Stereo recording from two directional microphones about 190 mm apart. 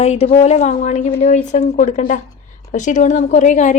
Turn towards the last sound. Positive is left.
turn(degrees=40)  # may be behind; listen again after turning